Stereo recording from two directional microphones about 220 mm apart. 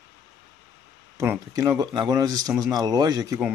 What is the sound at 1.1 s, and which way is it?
Speech, 10° right (ahead or behind).